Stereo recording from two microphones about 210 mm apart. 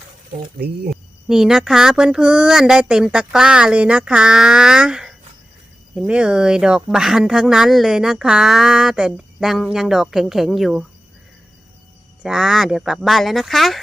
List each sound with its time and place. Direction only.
0.9 s speech: centre (ahead or behind)
12.2 s speech: 5° right (ahead or behind)